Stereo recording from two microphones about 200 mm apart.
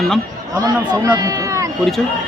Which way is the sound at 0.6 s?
20° right (ahead or behind).